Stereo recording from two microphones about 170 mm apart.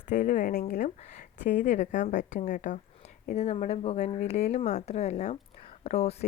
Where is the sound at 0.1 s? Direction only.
50° left (ahead or behind).